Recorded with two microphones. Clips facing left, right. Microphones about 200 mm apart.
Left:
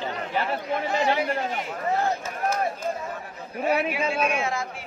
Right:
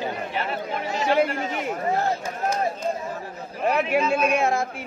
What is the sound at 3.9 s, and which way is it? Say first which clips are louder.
Speech: right 4 dB; 50° right (ahead or behind).